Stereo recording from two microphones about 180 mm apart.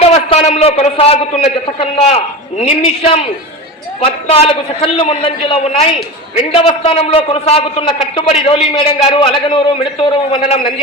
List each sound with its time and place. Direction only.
0.0 s a man's voice: 35° left (ahead or behind)